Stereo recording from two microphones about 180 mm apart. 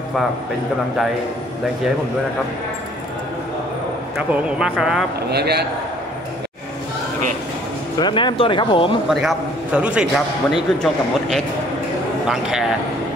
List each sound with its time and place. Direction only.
4.3 s a man's voice: 5° right (ahead or behind)
5.3 s a man's voice: 65° right (ahead or behind)
8.0 s speech: 25° left (ahead or behind)
9.1 s a man's voice: 5° right (ahead or behind)